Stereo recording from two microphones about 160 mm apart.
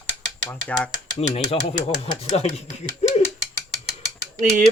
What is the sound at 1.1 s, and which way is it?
Speech, 40° left (ahead or behind).